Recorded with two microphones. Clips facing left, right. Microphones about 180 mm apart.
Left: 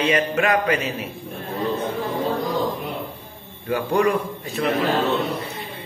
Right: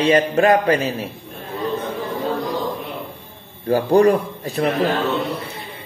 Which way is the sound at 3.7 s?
35° right (ahead or behind).